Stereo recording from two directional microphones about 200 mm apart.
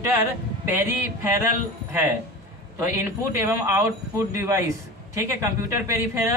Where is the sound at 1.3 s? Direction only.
10° right (ahead or behind).